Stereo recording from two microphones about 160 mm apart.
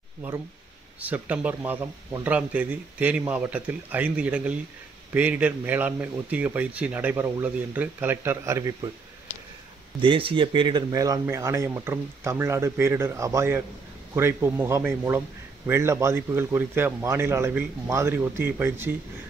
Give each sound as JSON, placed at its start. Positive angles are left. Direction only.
{"t": 0.9, "sound": "a man's voice", "side_deg": -10}
{"t": 10.0, "sound": "a man's voice", "side_deg": -35}